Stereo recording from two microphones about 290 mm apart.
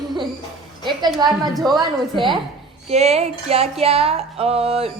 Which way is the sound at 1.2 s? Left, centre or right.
Centre.